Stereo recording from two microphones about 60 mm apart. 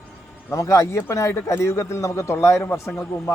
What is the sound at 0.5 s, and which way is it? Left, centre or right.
A man's voice, left.